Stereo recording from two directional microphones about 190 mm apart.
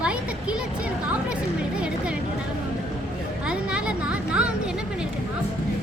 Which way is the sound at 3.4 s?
5° right (ahead or behind).